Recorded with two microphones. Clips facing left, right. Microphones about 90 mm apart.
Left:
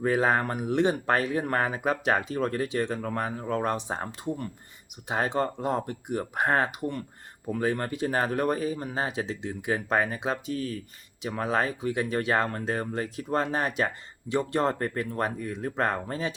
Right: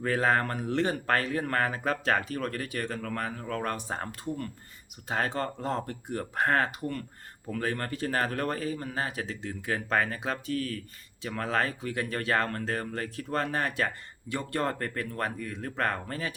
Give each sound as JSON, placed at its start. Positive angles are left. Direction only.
{"t": 0.0, "sound": "speech", "side_deg": 15}